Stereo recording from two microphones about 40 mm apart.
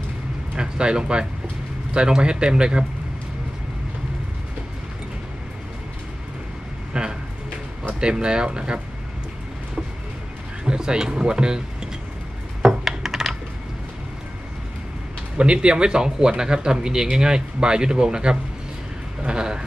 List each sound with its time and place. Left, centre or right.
0.6 s speech: right
6.9 s a sound: centre
8.0 s speech: right
10.6 s speech: right
12.8 s computer keyboard: centre
15.3 s speech: right
19.2 s a sound: centre